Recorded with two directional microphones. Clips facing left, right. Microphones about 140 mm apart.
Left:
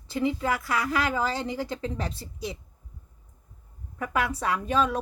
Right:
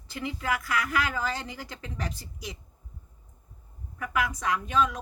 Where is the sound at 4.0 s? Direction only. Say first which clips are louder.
Left 2 dB; 30° left (ahead or behind).